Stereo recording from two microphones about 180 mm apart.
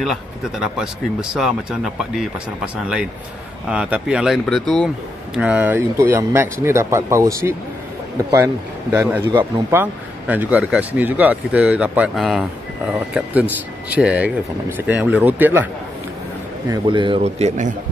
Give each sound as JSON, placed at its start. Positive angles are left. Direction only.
{"t": 0.0, "sound": "speech", "side_deg": 0}
{"t": 8.9, "sound": "speech", "side_deg": -10}
{"t": 16.6, "sound": "speech", "side_deg": -25}